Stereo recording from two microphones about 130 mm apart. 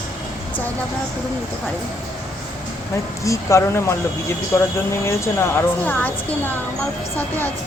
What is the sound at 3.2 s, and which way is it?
A woman's voice, 25° left (ahead or behind).